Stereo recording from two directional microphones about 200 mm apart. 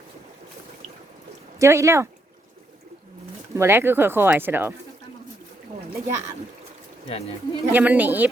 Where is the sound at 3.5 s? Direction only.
10° right (ahead or behind).